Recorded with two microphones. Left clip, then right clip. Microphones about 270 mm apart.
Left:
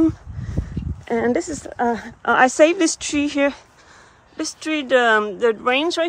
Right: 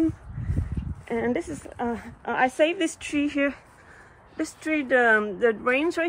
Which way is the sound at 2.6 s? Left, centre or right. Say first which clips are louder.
Left 8 dB; left.